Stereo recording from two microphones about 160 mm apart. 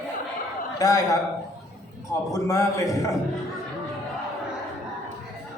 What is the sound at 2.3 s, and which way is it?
Speech, 20° left (ahead or behind).